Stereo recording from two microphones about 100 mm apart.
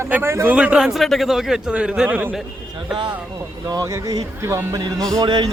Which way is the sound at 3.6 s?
40° right (ahead or behind).